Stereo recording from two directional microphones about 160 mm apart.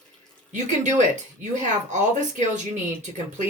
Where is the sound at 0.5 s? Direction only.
50° right (ahead or behind).